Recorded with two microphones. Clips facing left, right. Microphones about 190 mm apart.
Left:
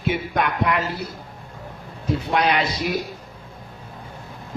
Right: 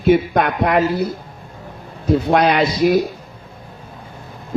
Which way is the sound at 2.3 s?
45° right (ahead or behind).